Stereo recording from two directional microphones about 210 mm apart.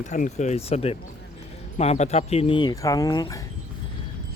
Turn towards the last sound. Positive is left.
turn(degrees=15)  # may be behind; listen again after turning